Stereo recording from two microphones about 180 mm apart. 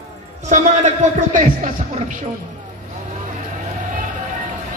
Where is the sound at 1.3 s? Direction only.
45° right (ahead or behind).